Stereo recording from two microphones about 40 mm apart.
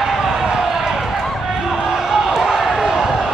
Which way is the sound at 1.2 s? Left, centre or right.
Centre.